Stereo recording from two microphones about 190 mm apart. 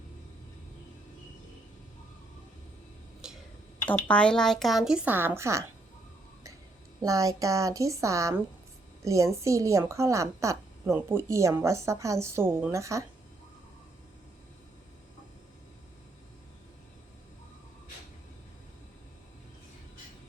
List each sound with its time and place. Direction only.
3.2 s a sound: 5° right (ahead or behind)
3.8 s speech: 5° left (ahead or behind); by 5.6 s 15° right (ahead or behind)
7.0 s a woman's voice: 20° right (ahead or behind)